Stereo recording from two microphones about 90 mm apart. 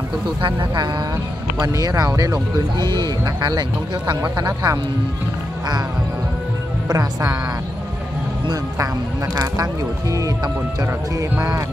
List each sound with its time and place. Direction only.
0.4 s speech: 60° right (ahead or behind)
1.7 s speech: 45° right (ahead or behind)
2.9 s speech: 55° right (ahead or behind)
6.9 s speech: 40° right (ahead or behind)
9.3 s speech: 45° right (ahead or behind)